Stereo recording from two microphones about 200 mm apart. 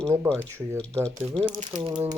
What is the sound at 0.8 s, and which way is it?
Speech, 5° left (ahead or behind).